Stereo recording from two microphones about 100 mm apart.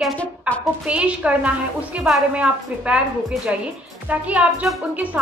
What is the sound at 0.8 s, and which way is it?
A woman's voice, 10° right (ahead or behind).